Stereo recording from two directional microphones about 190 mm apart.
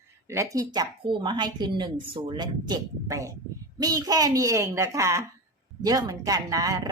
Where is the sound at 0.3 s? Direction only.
15° right (ahead or behind).